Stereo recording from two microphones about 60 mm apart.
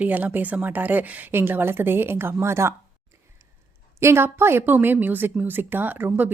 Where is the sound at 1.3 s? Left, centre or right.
Right.